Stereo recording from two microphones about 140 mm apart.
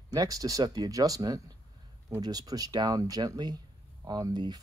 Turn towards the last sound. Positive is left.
turn(degrees=-30)  # may be behind; listen again after turning